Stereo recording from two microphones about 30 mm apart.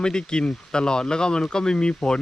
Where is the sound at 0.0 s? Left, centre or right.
Left.